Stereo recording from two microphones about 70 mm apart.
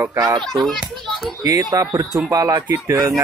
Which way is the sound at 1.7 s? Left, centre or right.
Right.